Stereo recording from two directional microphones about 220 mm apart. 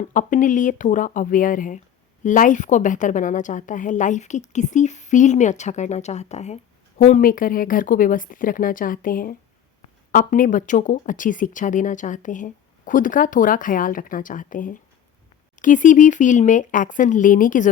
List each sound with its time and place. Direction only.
0.1 s a woman's voice: 35° left (ahead or behind)